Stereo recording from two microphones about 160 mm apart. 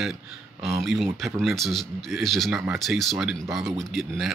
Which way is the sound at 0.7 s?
Centre (ahead or behind).